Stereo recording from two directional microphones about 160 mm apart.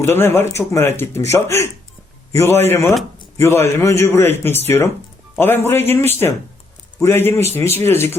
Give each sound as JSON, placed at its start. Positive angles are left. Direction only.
{"t": 0.0, "sound": "speech", "side_deg": 15}